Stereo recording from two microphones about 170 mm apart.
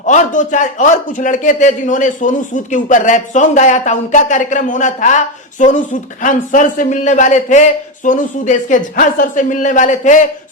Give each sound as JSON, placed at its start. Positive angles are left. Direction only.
{"t": 0.0, "sound": "speech", "side_deg": 45}